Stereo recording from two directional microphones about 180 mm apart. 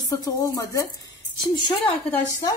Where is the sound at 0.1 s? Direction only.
20° left (ahead or behind).